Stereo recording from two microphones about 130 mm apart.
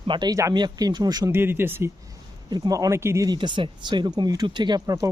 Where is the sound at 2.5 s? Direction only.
30° right (ahead or behind).